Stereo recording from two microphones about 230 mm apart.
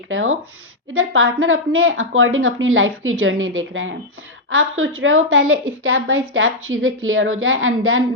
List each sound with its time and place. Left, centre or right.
0.1 s a woman's voice: right